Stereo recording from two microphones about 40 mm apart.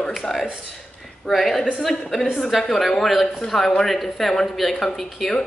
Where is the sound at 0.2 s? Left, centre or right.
Centre.